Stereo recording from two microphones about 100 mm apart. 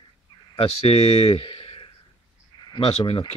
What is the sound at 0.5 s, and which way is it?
Speech, 70° left (ahead or behind).